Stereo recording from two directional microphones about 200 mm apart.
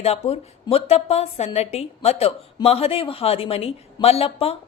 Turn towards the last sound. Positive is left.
turn(degrees=30)  # may be behind; listen again after turning